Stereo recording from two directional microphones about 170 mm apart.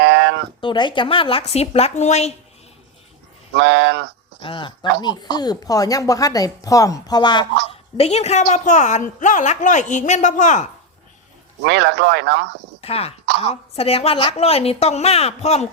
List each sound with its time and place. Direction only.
0.0 s a sound: 90° right
0.6 s a woman's voice: 25° left (ahead or behind)
3.5 s speech: 90° right
4.4 s a woman's voice: 30° left (ahead or behind); by 10.7 s 45° left (ahead or behind)
11.6 s speech: 90° right
12.8 s a woman's voice: 35° left (ahead or behind)